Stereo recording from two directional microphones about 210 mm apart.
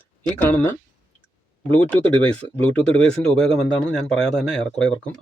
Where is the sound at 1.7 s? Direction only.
5° left (ahead or behind).